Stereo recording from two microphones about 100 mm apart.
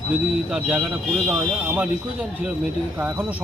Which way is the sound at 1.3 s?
15° right (ahead or behind).